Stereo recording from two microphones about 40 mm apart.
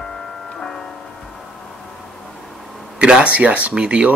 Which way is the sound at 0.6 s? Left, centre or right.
Centre.